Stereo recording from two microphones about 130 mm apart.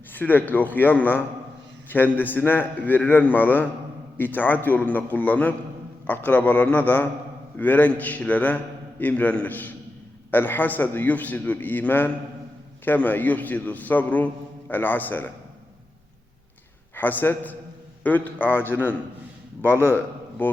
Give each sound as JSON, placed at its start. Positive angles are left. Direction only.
{"t": 0.1, "sound": "a man's voice", "side_deg": 15}
{"t": 16.9, "sound": "a man's voice", "side_deg": 15}
{"t": 20.4, "sound": "a man's voice", "side_deg": 15}